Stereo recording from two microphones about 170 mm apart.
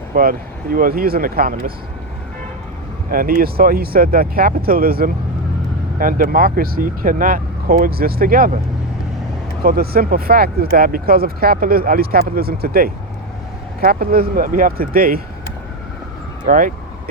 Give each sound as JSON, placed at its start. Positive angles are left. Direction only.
{"t": 0.1, "sound": "speech", "side_deg": -55}
{"t": 3.1, "sound": "speech", "side_deg": -60}
{"t": 9.6, "sound": "speech", "side_deg": -60}
{"t": 16.5, "sound": "speech", "side_deg": -55}